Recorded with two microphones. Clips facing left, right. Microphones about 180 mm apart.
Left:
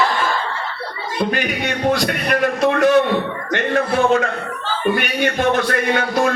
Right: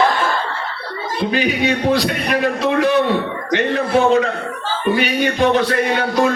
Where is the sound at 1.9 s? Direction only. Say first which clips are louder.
Right 1 dB; 50° left (ahead or behind).